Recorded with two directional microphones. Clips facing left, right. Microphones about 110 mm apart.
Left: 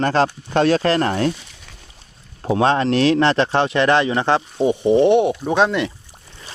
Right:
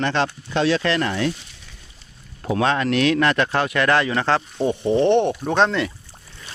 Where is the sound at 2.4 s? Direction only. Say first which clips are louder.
Left 4 dB; 30° left (ahead or behind); by 5.8 s 10° left (ahead or behind).